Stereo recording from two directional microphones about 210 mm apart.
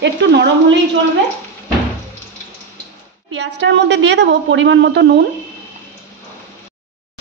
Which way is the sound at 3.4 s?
55° right (ahead or behind).